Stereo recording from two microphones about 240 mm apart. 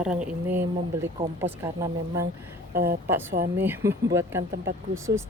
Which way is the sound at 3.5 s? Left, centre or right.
Centre.